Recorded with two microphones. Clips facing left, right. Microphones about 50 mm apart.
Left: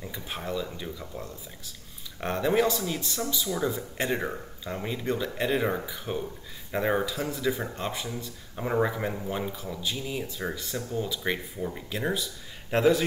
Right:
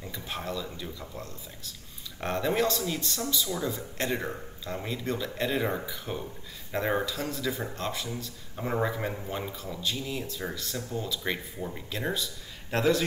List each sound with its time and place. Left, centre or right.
0.0 s speech: centre
12.7 s a man's voice: centre